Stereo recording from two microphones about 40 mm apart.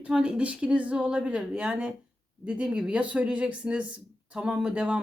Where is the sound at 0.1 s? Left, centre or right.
Right.